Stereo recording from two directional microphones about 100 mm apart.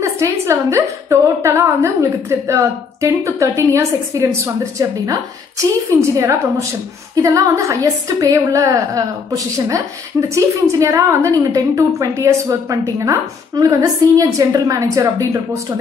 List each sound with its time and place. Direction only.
0.0 s a woman's voice: 30° right (ahead or behind)